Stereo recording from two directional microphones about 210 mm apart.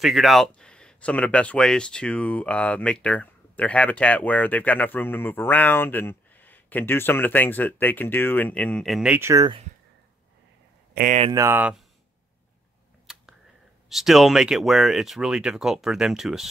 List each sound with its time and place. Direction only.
0.0 s speech: centre (ahead or behind); by 9.6 s 15° right (ahead or behind)
11.0 s speech: 40° right (ahead or behind)
11.3 s speech: 10° right (ahead or behind)
13.0 s a sound: centre (ahead or behind)
13.8 s speech: centre (ahead or behind)